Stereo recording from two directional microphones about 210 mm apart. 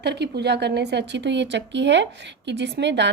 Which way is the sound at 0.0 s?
55° right (ahead or behind).